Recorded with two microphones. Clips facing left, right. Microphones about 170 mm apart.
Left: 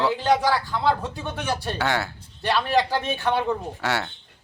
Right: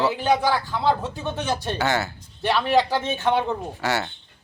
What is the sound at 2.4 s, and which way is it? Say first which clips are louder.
Speech: right 2 dB; 15° right (ahead or behind).